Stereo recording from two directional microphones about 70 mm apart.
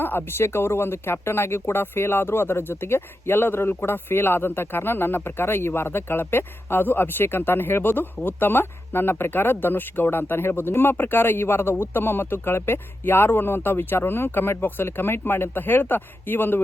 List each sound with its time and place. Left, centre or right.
0.0 s speech: left